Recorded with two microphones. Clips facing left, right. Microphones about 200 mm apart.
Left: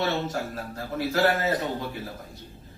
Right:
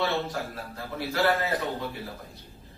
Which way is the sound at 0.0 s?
45° left (ahead or behind).